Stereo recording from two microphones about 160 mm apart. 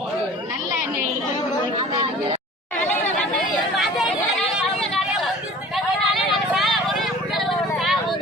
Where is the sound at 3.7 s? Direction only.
Centre (ahead or behind).